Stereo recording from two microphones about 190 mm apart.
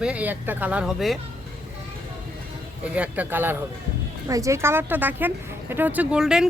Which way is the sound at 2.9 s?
5° right (ahead or behind).